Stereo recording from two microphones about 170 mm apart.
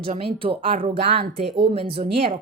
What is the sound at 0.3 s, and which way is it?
Speech, 35° right (ahead or behind).